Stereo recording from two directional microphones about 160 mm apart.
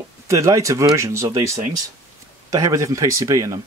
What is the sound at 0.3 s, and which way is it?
Speech, 20° right (ahead or behind).